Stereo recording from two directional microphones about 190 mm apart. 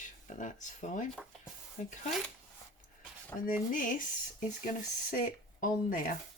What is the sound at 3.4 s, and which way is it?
Speech, 45° left (ahead or behind).